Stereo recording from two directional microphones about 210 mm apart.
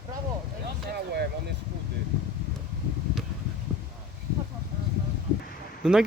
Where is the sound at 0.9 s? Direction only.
50° right (ahead or behind).